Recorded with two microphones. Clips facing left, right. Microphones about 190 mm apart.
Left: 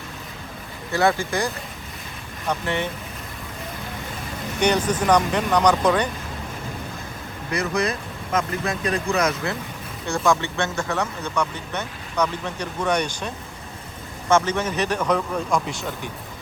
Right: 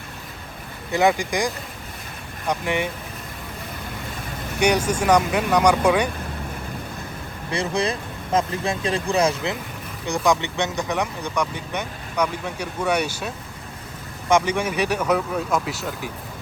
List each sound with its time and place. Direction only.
0.9 s speech: 15° right (ahead or behind)
2.5 s speech: 10° right (ahead or behind)
4.6 s speech: 10° right (ahead or behind)
7.5 s speech: 30° right (ahead or behind)
10.2 s speech: 15° right (ahead or behind)